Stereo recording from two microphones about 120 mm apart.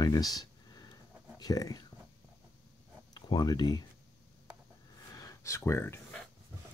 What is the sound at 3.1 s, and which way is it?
Speech, 35° left (ahead or behind).